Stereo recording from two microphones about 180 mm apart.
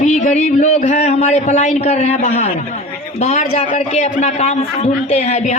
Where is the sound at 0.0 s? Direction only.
40° left (ahead or behind).